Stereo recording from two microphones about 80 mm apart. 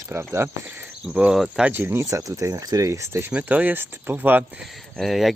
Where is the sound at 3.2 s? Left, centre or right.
Right.